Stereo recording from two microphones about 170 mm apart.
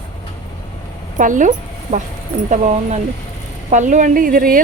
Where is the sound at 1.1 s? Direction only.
50° right (ahead or behind).